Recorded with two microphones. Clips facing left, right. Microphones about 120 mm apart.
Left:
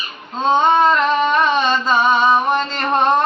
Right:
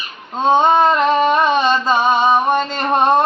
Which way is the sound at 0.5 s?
20° right (ahead or behind).